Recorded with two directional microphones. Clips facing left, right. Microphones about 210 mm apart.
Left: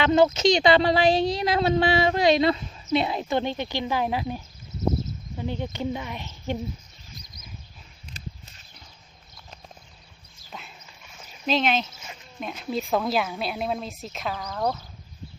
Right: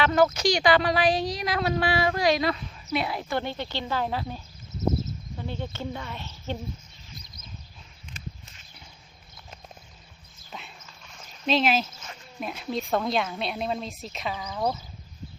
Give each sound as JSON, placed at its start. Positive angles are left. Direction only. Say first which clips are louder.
{"t": 0.0, "sound": "speech", "louder": "left 3 dB", "side_deg": 20}
{"t": 10.5, "sound": "dog", "louder": "even", "side_deg": 0}
{"t": 10.8, "sound": "a sound", "louder": "even", "side_deg": 5}
{"t": 12.4, "sound": "speech", "louder": "left 1 dB", "side_deg": 0}